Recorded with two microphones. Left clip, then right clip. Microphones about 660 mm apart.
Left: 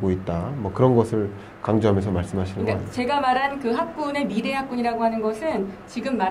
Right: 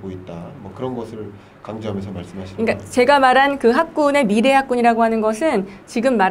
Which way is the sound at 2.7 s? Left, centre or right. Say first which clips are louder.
Right 11 dB; right.